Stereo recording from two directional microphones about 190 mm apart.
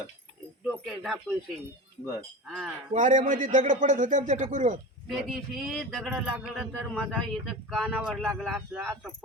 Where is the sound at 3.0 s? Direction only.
40° right (ahead or behind).